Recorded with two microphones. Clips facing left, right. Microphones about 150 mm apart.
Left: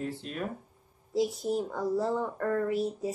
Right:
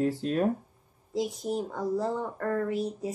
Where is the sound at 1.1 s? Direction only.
Centre (ahead or behind).